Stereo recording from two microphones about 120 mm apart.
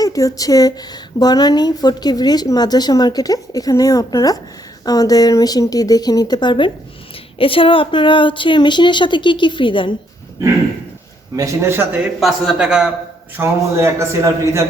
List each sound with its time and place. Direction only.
0.0 s speech: 30° left (ahead or behind); by 9.9 s 45° left (ahead or behind)
11.3 s a man's voice: 25° right (ahead or behind)
12.2 s a man's voice: 5° right (ahead or behind)
13.3 s a man's voice: 20° right (ahead or behind)